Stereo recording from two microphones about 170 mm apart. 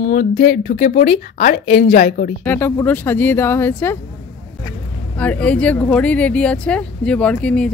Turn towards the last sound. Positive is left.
turn(degrees=5)  # may be behind; listen again after turning